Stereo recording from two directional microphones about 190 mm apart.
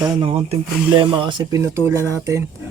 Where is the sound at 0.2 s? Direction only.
30° right (ahead or behind).